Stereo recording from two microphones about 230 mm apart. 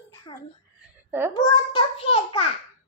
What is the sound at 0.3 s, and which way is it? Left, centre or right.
A child's voice, left.